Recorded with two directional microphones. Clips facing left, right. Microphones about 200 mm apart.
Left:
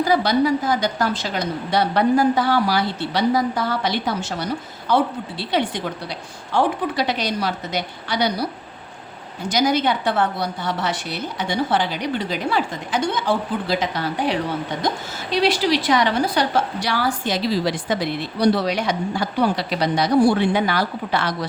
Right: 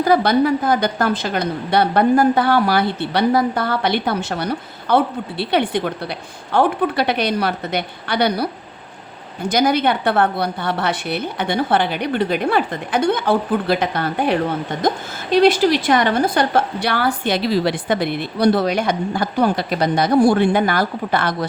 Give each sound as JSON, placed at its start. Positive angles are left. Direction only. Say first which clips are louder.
{"t": 0.0, "sound": "a woman's voice", "louder": "right 3 dB", "side_deg": -55}
{"t": 9.5, "sound": "a woman's voice", "louder": "right 2 dB", "side_deg": -55}